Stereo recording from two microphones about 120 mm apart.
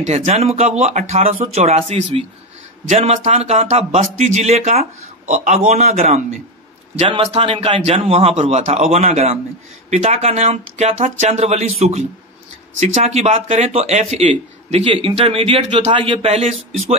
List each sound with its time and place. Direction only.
0.0 s speech: 70° right (ahead or behind); by 5.6 s 85° right
5.7 s speech: 65° right (ahead or behind)
7.0 s a man's voice: 50° right (ahead or behind)
8.4 s speech: 65° right (ahead or behind)
12.8 s speech: 65° right (ahead or behind); by 16.0 s 45° right (ahead or behind)
16.0 s speech: 55° right (ahead or behind)